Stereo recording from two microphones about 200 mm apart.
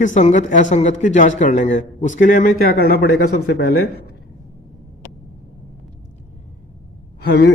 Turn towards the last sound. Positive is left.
turn(degrees=55)  # may be behind; listen again after turning